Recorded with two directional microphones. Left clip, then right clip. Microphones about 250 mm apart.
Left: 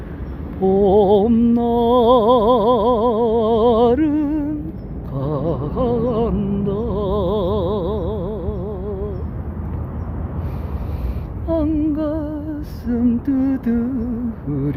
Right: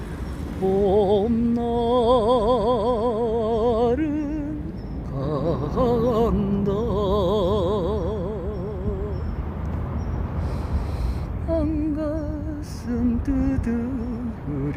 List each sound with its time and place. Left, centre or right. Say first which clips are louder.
0.8 s music: left 6 dB; centre
5.1 s music: left 3 dB; centre
11.4 s music: left 5 dB; centre
12.8 s female singing: left 6 dB; centre